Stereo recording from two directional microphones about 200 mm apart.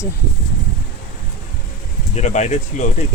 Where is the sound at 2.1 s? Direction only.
35° left (ahead or behind).